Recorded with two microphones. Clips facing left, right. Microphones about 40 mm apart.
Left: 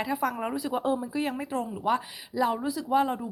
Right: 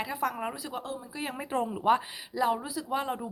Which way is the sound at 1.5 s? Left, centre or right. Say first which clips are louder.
Right 2 dB; right.